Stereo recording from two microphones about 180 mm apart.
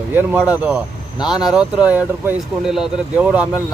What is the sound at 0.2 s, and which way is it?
Speech, 10° right (ahead or behind).